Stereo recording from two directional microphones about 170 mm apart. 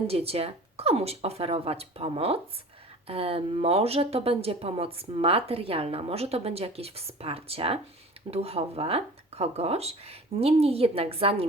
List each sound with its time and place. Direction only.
0.1 s speech: 35° right (ahead or behind)